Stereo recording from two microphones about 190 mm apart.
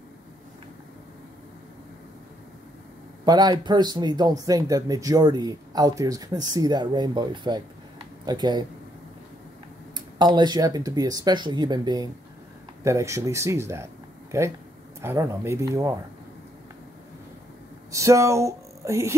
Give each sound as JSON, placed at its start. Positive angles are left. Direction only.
{"t": 3.3, "sound": "speech", "side_deg": -20}
{"t": 9.9, "sound": "speech", "side_deg": -25}
{"t": 17.9, "sound": "music", "side_deg": -15}